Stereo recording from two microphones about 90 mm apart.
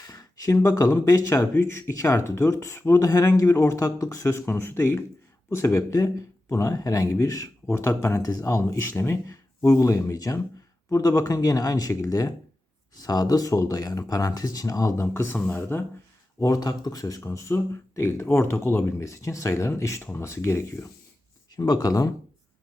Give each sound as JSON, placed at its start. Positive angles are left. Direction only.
{"t": 0.0, "sound": "a sound", "side_deg": 45}
{"t": 0.5, "sound": "speech", "side_deg": 35}
{"t": 16.4, "sound": "speech", "side_deg": 45}
{"t": 21.5, "sound": "speech", "side_deg": 50}